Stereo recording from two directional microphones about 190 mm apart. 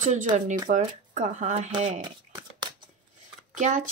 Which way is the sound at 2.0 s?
25° right (ahead or behind).